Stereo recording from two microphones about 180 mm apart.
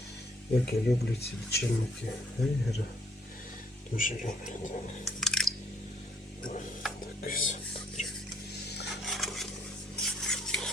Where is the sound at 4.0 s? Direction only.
50° left (ahead or behind).